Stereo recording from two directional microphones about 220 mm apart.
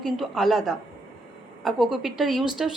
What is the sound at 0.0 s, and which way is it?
A woman's voice, centre (ahead or behind).